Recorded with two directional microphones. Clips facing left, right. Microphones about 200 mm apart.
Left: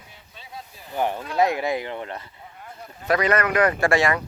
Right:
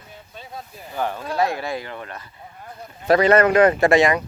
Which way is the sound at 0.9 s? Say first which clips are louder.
Even; 20° left (ahead or behind).